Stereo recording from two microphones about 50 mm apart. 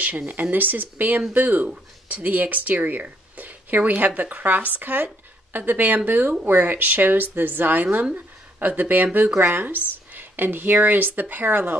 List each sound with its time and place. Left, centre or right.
0.3 s a woman's voice: right